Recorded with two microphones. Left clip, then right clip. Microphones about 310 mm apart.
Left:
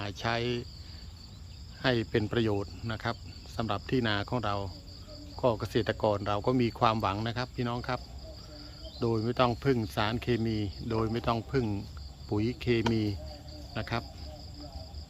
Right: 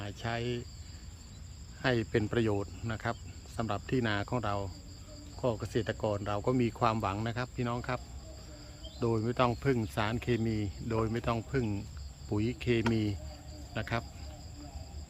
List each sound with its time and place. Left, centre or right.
0.0 s cricket: centre
1.8 s speech: centre